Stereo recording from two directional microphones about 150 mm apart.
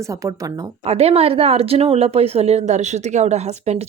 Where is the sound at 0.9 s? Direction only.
45° right (ahead or behind).